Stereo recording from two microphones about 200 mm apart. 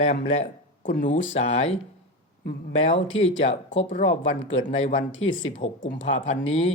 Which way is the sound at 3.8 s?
35° left (ahead or behind).